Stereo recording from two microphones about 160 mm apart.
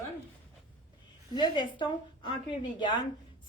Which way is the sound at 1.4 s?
30° left (ahead or behind).